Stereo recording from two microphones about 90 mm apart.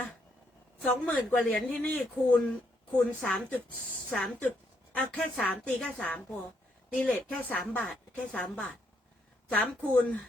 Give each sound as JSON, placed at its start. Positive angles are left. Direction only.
{"t": 0.8, "sound": "a woman's voice", "side_deg": 15}
{"t": 3.2, "sound": "a woman's voice", "side_deg": 5}